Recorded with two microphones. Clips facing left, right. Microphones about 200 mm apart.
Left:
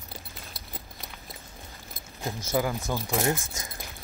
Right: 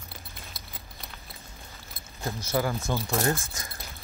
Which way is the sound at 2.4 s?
15° left (ahead or behind).